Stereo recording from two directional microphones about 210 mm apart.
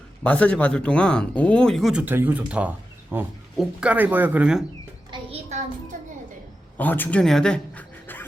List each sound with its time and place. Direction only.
0.2 s speech: 5° left (ahead or behind)
5.1 s a sound: 30° right (ahead or behind)
6.7 s speech: 10° left (ahead or behind)